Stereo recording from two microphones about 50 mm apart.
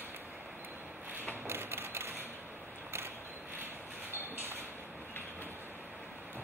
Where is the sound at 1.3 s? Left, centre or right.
Right.